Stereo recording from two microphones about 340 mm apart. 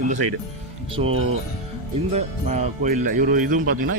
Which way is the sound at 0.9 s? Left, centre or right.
Centre.